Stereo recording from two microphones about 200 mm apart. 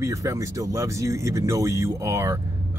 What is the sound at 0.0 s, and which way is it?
Speech, 15° right (ahead or behind).